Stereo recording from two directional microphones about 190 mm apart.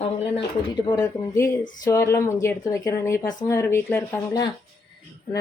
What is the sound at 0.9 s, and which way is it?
A woman's voice, 15° left (ahead or behind).